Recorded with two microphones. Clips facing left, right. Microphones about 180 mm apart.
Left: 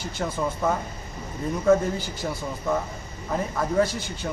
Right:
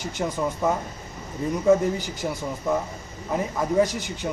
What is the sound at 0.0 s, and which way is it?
Speech, 15° right (ahead or behind).